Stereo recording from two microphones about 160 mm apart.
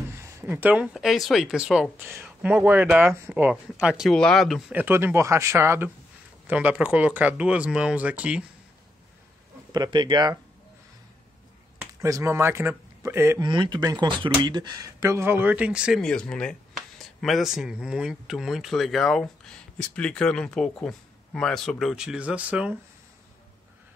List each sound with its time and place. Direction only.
0.2 s speech: 15° right (ahead or behind)
9.7 s speech: 25° right (ahead or behind)
11.8 s speech: 20° right (ahead or behind)
13.4 s speech: 30° right (ahead or behind); by 16.0 s 5° right (ahead or behind)
16.0 s speech: 5° left (ahead or behind)